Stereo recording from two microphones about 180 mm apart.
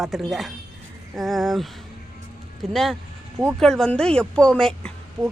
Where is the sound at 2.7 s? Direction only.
Centre (ahead or behind).